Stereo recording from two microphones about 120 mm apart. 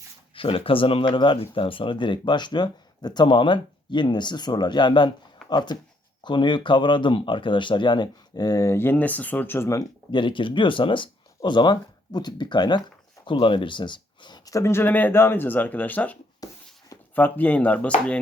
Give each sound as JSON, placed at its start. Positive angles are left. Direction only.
{"t": 0.3, "sound": "speech", "side_deg": 50}
{"t": 10.1, "sound": "speech", "side_deg": 40}
{"t": 16.4, "sound": "a sound", "side_deg": 30}
{"t": 17.2, "sound": "speech", "side_deg": 15}